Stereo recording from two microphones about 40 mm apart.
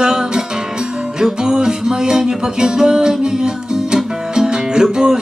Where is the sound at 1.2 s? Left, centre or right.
Centre.